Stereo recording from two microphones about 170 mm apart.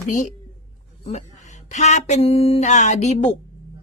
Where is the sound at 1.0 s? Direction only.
40° left (ahead or behind).